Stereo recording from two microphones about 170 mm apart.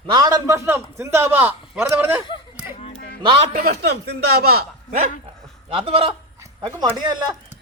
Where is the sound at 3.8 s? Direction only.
75° right (ahead or behind).